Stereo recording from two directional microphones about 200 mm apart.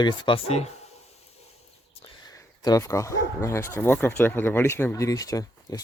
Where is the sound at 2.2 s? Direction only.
20° left (ahead or behind).